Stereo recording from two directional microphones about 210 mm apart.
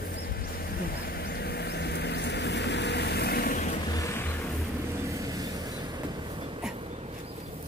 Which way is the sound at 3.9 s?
15° left (ahead or behind).